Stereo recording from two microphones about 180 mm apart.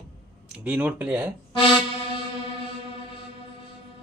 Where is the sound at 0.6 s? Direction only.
10° right (ahead or behind).